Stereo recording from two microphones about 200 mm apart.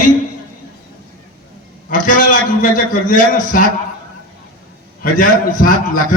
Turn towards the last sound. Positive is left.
turn(degrees=45)  # may be behind; listen again after turning